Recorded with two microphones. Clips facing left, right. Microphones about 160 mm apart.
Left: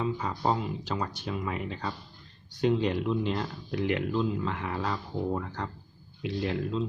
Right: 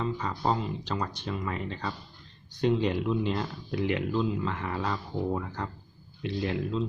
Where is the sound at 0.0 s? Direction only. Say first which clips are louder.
Left 1 dB; 5° left (ahead or behind).